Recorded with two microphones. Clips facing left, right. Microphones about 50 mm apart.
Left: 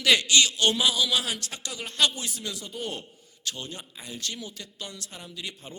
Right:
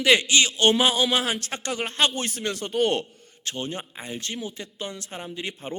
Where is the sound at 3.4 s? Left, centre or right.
Right.